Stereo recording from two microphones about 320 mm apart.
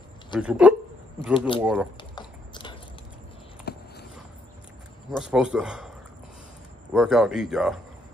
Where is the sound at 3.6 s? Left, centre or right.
Left.